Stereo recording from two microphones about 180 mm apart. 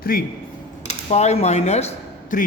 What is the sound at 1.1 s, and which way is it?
Speech, 35° left (ahead or behind).